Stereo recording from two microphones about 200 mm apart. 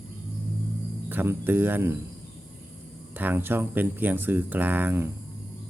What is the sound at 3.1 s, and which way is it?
Speech, 10° right (ahead or behind).